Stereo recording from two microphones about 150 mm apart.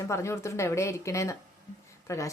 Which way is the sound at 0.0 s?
20° left (ahead or behind).